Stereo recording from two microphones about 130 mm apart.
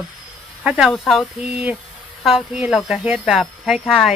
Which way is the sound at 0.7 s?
5° right (ahead or behind).